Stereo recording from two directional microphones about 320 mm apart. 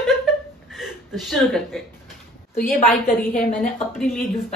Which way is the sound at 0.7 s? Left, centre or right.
Centre.